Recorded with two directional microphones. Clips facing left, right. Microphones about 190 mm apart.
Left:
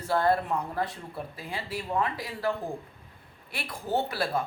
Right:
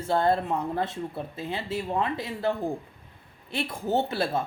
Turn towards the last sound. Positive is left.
turn(degrees=-25)  # may be behind; listen again after turning